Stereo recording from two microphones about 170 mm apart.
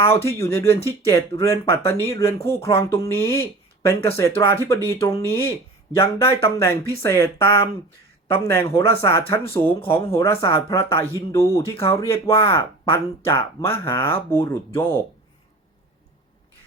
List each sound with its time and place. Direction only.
0.1 s speech: 15° left (ahead or behind)